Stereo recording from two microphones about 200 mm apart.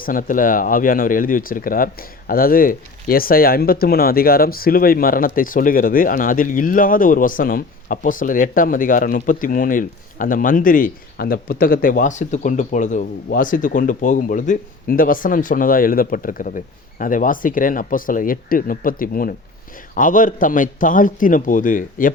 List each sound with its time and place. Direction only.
0.0 s a man's voice: 45° left (ahead or behind)